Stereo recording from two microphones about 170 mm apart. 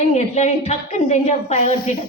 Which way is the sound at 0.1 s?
40° left (ahead or behind).